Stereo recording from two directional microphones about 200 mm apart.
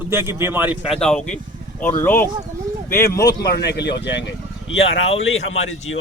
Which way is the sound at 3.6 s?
55° left (ahead or behind).